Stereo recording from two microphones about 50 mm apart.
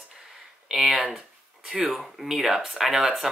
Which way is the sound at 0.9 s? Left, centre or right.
Right.